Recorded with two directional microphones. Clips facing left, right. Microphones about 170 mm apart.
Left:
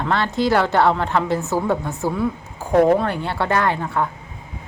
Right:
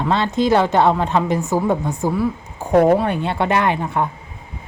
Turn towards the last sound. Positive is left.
turn(degrees=-20)  # may be behind; listen again after turning